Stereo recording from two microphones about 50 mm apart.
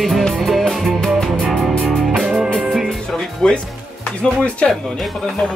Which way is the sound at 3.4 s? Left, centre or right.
Centre.